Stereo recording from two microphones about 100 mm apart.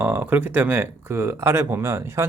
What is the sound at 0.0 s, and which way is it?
Speech, 20° right (ahead or behind).